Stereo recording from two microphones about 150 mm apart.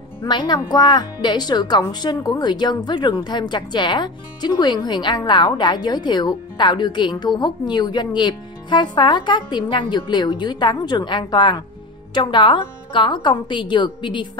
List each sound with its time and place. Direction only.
0.3 s a woman's voice: 30° left (ahead or behind)